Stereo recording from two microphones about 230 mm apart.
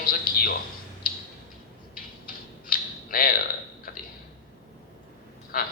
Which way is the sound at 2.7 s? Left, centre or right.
Left.